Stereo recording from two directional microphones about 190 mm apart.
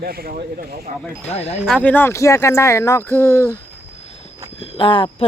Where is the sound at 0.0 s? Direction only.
55° right (ahead or behind).